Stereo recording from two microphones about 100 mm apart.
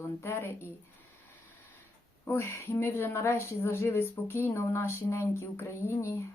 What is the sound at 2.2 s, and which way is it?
A woman's voice, 25° left (ahead or behind).